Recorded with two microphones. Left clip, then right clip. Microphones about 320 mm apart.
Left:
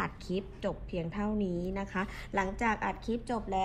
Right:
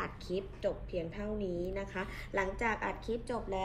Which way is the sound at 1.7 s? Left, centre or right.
Left.